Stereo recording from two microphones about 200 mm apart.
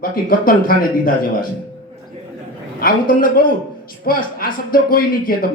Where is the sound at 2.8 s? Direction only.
45° left (ahead or behind).